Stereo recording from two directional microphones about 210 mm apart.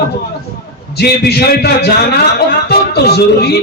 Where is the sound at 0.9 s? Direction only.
50° left (ahead or behind).